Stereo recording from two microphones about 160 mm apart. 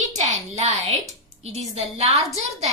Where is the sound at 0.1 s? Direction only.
50° right (ahead or behind).